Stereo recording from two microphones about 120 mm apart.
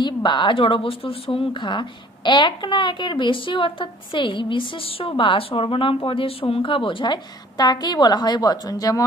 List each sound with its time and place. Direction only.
0.0 s a woman's voice: 40° left (ahead or behind)